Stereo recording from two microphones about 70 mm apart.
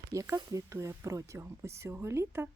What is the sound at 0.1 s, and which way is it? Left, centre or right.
Speech, right.